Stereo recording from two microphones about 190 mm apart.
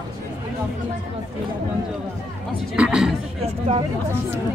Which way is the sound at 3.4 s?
30° right (ahead or behind).